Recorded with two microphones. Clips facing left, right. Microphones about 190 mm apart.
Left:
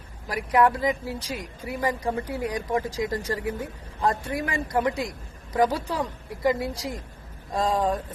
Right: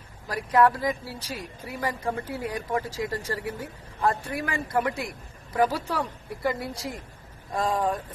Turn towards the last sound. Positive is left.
turn(degrees=20)  # may be behind; listen again after turning